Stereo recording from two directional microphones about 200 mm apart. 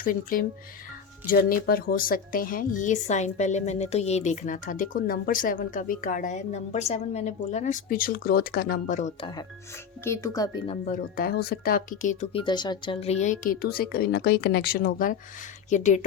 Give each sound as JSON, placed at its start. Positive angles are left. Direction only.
{"t": 0.0, "sound": "a woman's voice", "side_deg": 45}
{"t": 10.0, "sound": "speech", "side_deg": 15}
{"t": 10.8, "sound": "a woman's voice", "side_deg": 45}